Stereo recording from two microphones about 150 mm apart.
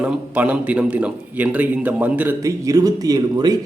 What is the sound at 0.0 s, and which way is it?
A man's voice, 5° right (ahead or behind).